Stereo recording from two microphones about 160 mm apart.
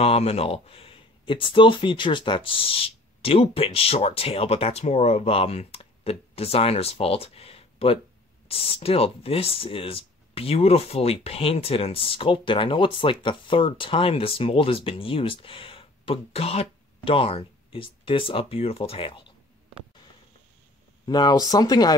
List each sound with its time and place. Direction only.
0.0 s speech: 40° left (ahead or behind)
21.0 s speech: 25° left (ahead or behind)